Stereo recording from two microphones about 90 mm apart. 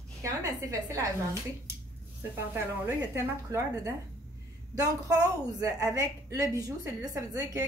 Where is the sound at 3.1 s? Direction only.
35° right (ahead or behind).